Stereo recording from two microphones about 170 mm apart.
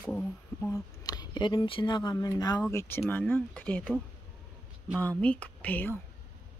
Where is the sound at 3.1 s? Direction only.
10° left (ahead or behind).